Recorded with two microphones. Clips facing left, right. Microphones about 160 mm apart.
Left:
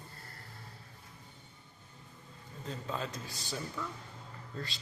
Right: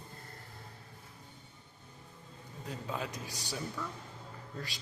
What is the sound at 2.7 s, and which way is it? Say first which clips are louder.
Speech: even; 10° right (ahead or behind).